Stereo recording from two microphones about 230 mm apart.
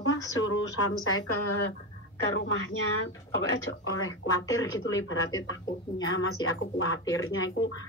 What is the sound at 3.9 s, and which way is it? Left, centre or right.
Speech, left.